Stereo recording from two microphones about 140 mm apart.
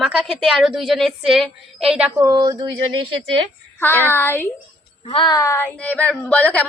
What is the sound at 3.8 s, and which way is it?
Speech, 15° left (ahead or behind).